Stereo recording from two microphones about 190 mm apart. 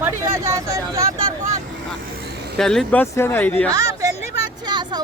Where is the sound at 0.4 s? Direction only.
15° right (ahead or behind).